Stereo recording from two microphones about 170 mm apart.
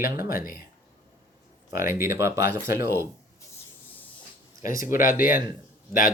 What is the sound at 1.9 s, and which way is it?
Speech, 15° right (ahead or behind).